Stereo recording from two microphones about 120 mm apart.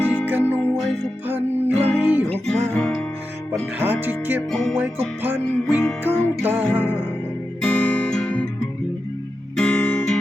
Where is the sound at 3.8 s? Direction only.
15° right (ahead or behind).